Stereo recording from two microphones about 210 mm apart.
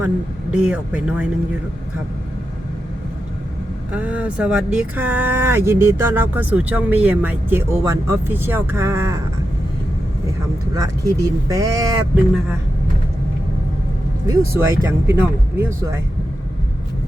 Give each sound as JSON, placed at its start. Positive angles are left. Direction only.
{"t": 0.5, "sound": "speech", "side_deg": -5}
{"t": 3.9, "sound": "speech", "side_deg": -5}
{"t": 10.8, "sound": "speech", "side_deg": -15}
{"t": 14.3, "sound": "speech", "side_deg": -15}